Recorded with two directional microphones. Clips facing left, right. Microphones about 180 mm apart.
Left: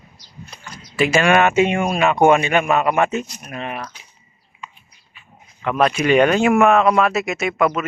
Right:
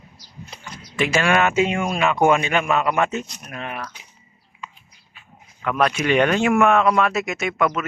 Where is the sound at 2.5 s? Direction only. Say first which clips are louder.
Left 3 dB; 50° left (ahead or behind).